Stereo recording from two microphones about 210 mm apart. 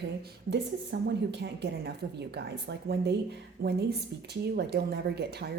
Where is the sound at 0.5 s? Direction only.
55° right (ahead or behind).